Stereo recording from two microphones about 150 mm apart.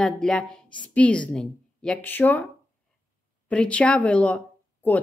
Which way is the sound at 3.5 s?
10° left (ahead or behind).